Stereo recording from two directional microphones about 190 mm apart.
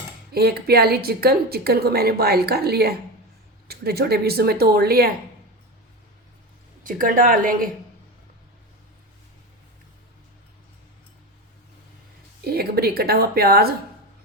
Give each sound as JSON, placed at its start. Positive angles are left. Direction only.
{"t": 0.3, "sound": "a woman's voice", "side_deg": -55}
{"t": 6.8, "sound": "a woman's voice", "side_deg": -45}
{"t": 12.5, "sound": "a woman's voice", "side_deg": -55}